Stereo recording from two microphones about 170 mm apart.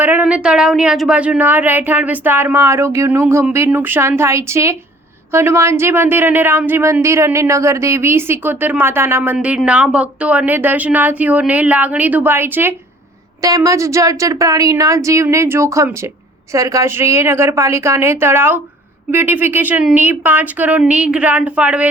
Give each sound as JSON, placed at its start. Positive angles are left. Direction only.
{"t": 0.0, "sound": "speech", "side_deg": -10}